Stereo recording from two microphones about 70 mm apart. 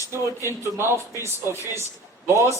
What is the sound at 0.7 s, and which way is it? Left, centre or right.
A man's voice, right.